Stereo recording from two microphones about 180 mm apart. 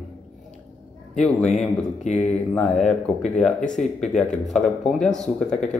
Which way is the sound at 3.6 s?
40° left (ahead or behind).